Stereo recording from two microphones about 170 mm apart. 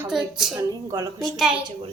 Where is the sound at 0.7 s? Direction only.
15° right (ahead or behind).